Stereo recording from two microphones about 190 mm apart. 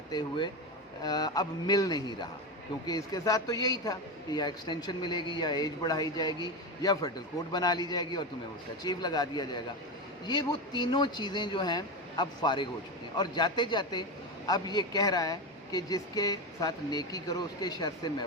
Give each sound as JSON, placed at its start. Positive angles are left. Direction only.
{"t": 0.1, "sound": "speech", "side_deg": 25}